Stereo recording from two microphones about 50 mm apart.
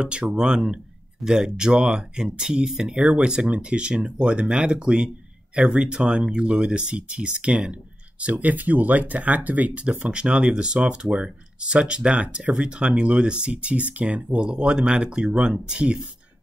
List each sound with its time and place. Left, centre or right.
0.0 s speech: centre